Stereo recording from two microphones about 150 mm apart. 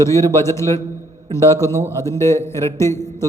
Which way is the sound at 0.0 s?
20° left (ahead or behind).